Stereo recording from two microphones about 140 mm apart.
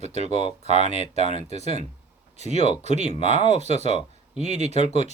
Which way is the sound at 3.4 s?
55° right (ahead or behind).